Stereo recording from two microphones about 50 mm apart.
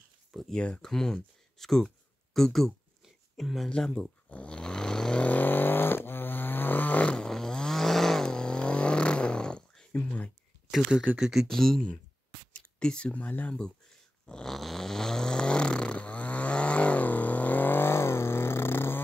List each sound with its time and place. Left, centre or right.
0.5 s speech: centre
4.3 s snoring: left
5.2 s vehicle: left
7.2 s vehicle: centre
11.1 s speech: centre
11.4 s speech: centre
12.5 s speech: centre
14.2 s snoring: centre; by 18.9 s left